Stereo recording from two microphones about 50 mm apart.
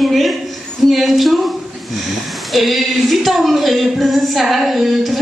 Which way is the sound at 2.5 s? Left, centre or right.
Centre.